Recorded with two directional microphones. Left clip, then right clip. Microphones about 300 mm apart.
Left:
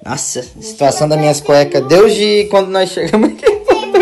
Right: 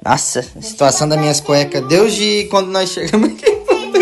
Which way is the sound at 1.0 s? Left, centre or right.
Centre.